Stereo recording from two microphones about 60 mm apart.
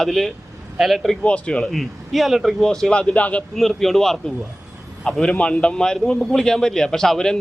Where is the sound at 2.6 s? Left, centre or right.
Centre.